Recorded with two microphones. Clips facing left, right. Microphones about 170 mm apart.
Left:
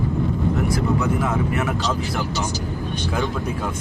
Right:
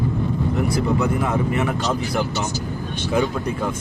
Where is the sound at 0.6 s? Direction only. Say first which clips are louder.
Right 1 dB; centre (ahead or behind).